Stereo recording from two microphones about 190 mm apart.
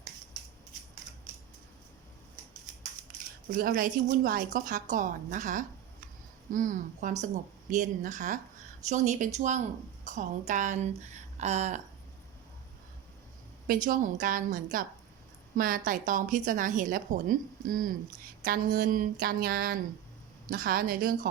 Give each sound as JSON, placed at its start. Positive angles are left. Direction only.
{"t": 3.5, "sound": "a woman's voice", "side_deg": -50}
{"t": 13.7, "sound": "speech", "side_deg": -45}